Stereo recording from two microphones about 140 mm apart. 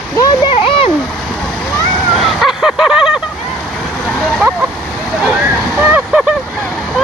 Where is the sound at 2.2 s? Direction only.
Centre (ahead or behind).